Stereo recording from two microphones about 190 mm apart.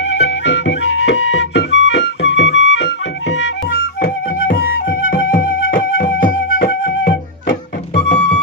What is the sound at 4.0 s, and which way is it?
Flute, 55° left (ahead or behind).